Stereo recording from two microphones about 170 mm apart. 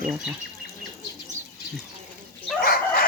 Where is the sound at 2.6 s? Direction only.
65° left (ahead or behind).